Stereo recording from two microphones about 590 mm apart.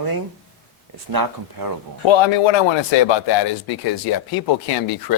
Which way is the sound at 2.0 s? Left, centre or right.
Left.